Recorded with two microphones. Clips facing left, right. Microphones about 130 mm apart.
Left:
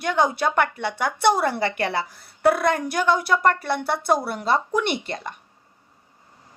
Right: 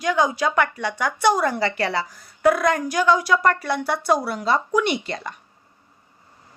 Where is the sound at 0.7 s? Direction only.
50° right (ahead or behind).